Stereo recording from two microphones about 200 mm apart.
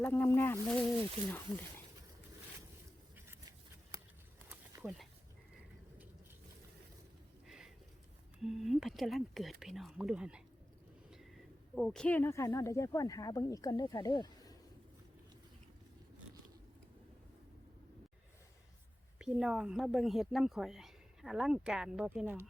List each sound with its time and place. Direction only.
0.0 s speech: 10° left (ahead or behind)
4.4 s a sound: 5° right (ahead or behind)
7.4 s a sound: centre (ahead or behind)
8.4 s speech: centre (ahead or behind)
11.7 s speech: 5° left (ahead or behind); by 14.5 s 20° left (ahead or behind)
19.2 s speech: 5° right (ahead or behind)